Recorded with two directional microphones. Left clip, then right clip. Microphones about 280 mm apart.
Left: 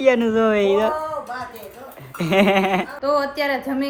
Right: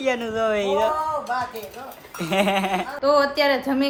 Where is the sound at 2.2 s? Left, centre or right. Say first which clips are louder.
Left 4 dB; left.